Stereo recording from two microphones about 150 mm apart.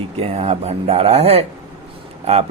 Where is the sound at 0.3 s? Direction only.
45° right (ahead or behind).